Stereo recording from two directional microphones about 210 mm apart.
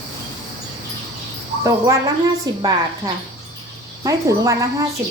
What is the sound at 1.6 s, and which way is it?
A woman's voice, 15° right (ahead or behind).